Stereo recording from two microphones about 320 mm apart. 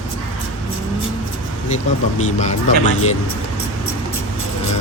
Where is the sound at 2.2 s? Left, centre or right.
Left.